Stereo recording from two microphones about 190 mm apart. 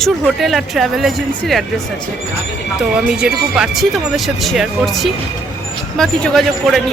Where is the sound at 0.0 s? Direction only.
Centre (ahead or behind).